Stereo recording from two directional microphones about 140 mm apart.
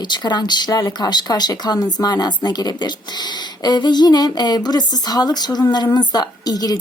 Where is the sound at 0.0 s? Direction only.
30° left (ahead or behind).